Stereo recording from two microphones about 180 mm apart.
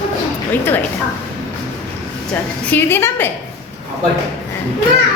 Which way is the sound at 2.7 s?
15° left (ahead or behind).